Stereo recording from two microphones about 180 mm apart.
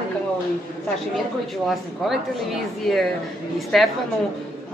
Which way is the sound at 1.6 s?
Centre (ahead or behind).